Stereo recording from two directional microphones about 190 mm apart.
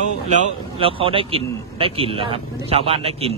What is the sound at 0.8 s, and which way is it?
A man's voice, 30° right (ahead or behind).